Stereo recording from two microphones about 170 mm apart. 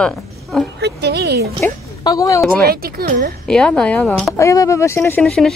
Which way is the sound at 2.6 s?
60° right (ahead or behind).